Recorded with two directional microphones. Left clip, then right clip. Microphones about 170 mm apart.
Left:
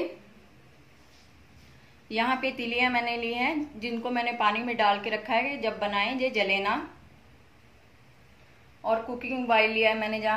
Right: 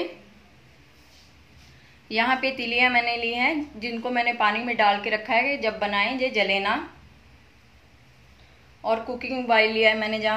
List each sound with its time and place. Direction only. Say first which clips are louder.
2.0 s a woman's voice: right 4 dB; 20° right (ahead or behind)
8.8 s a woman's voice: right 2 dB; 20° right (ahead or behind)